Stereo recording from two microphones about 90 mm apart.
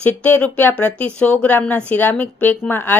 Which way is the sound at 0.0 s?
20° left (ahead or behind).